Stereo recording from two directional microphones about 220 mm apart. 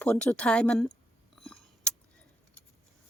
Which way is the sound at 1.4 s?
Centre (ahead or behind).